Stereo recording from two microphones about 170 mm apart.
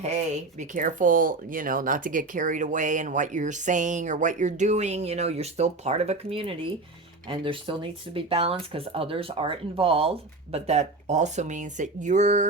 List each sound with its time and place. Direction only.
0.0 s speech: 40° right (ahead or behind)